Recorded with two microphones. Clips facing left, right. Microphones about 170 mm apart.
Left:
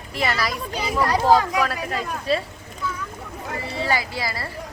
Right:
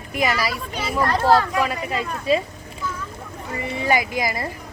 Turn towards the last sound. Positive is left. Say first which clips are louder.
# right 4 dB
turn(degrees=-20)  # may be behind; listen again after turning